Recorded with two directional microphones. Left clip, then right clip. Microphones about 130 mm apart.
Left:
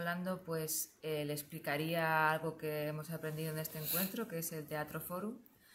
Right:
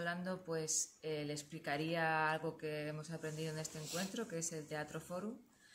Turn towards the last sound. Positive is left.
turn(degrees=0)  # may be behind; listen again after turning